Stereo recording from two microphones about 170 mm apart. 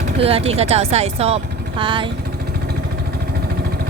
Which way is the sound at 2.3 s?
65° right (ahead or behind).